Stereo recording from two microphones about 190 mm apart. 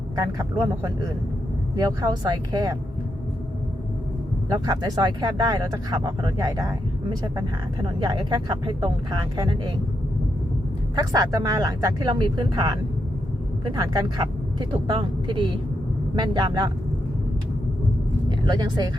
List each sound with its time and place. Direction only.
0.2 s speech: 15° right (ahead or behind)
4.6 s speech: 20° right (ahead or behind)
7.9 s speech: 20° right (ahead or behind)
10.9 s speech: 20° right (ahead or behind)
13.7 s speech: 20° right (ahead or behind)
18.3 s speech: 25° right (ahead or behind)